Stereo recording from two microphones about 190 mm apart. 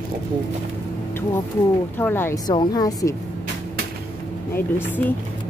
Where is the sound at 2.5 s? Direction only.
20° left (ahead or behind).